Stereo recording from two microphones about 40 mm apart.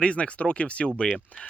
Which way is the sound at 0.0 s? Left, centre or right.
Left.